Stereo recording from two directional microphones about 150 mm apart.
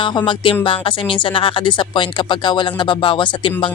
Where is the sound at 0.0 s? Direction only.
35° left (ahead or behind).